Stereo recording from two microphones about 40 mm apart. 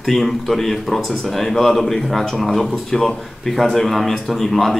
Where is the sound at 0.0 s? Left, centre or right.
Centre.